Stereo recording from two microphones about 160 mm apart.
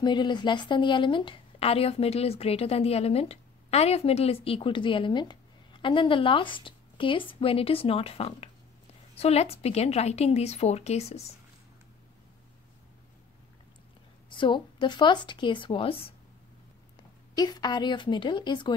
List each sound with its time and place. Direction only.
0.0 s a woman's voice: 30° left (ahead or behind)
14.3 s a woman's voice: 30° left (ahead or behind)
17.4 s speech: 25° left (ahead or behind)